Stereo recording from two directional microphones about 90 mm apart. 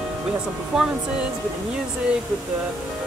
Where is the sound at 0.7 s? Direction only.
10° right (ahead or behind).